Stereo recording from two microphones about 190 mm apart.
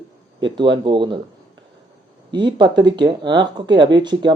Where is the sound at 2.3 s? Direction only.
25° right (ahead or behind).